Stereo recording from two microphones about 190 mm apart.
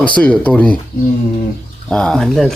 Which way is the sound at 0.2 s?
5° left (ahead or behind).